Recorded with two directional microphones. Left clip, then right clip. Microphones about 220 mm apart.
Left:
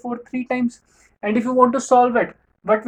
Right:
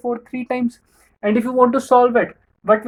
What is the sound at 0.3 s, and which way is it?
Speech, 25° right (ahead or behind).